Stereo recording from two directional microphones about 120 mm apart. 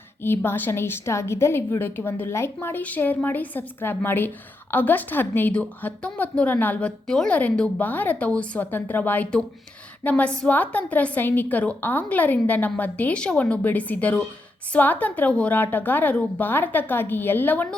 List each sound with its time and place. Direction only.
0.2 s a woman's voice: 20° left (ahead or behind)